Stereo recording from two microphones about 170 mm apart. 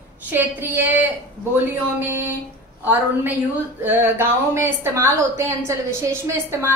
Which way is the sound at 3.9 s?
15° right (ahead or behind).